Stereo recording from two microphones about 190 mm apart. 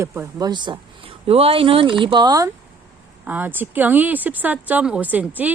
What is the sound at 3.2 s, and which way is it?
Speech, 10° right (ahead or behind).